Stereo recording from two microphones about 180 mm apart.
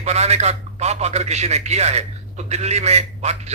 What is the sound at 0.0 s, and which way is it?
A man's voice, 35° right (ahead or behind).